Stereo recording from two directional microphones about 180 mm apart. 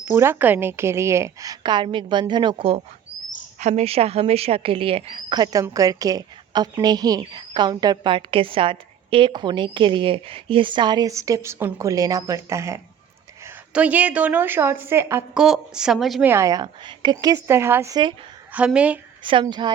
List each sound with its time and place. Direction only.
0.0 s a woman's voice: 15° right (ahead or behind)
15.4 s a woman's voice: 5° right (ahead or behind)
16.2 s speech: 15° right (ahead or behind)
18.5 s a woman's voice: 5° right (ahead or behind)
19.2 s speech: 25° right (ahead or behind)